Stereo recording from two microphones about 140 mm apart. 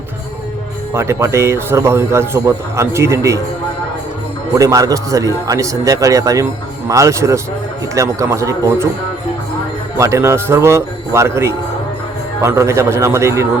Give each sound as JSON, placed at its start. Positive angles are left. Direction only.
{"t": 0.9, "sound": "speech", "side_deg": -20}
{"t": 4.5, "sound": "speech", "side_deg": -25}
{"t": 10.0, "sound": "speech", "side_deg": -20}